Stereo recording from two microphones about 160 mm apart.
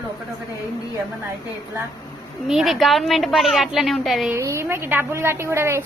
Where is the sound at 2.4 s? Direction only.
Centre (ahead or behind).